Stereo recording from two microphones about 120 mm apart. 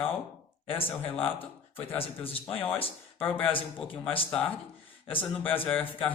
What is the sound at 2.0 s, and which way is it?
Speech, 50° left (ahead or behind).